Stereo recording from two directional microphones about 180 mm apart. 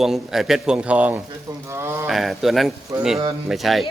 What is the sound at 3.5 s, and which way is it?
Speech, centre (ahead or behind).